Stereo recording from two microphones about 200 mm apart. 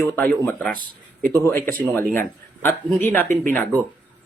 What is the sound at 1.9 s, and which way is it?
Speech, 10° left (ahead or behind).